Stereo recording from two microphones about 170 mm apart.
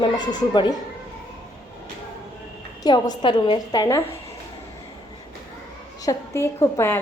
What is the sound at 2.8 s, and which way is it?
A woman's voice, 25° left (ahead or behind).